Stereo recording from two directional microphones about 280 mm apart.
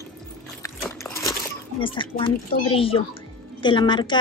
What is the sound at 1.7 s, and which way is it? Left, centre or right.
Speech, centre.